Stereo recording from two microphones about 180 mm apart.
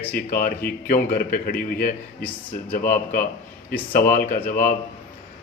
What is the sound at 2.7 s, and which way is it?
Speech, 50° left (ahead or behind).